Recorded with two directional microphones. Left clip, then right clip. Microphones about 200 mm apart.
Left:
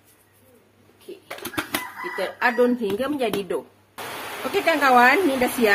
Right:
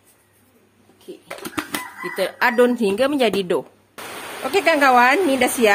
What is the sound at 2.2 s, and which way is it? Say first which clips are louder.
Speech: right 4 dB; 65° right (ahead or behind).